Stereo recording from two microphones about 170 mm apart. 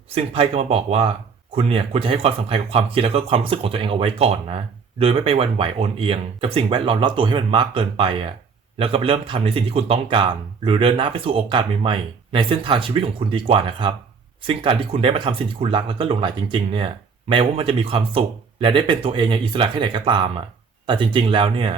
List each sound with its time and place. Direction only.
0.1 s speech: 35° right (ahead or behind)